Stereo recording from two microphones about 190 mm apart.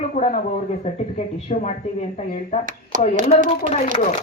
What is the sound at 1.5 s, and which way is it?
A woman's voice, 40° left (ahead or behind).